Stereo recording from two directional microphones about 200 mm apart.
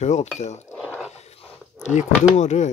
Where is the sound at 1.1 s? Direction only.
35° left (ahead or behind).